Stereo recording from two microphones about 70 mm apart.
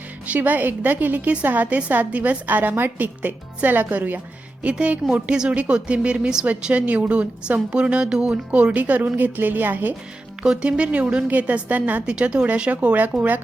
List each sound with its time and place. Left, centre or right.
0.3 s a woman's voice: right
10.4 s a woman's voice: centre